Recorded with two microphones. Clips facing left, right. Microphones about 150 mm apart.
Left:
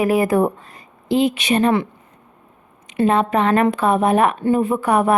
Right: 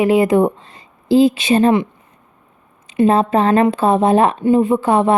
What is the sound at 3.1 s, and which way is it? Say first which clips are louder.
A woman's voice: right 2 dB; 30° right (ahead or behind).